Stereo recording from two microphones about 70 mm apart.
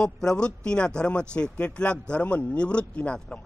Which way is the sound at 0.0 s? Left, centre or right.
Centre.